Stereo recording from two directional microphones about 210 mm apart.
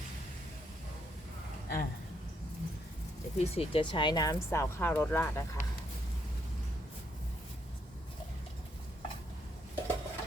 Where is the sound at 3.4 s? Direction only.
30° left (ahead or behind); by 5.4 s 10° left (ahead or behind).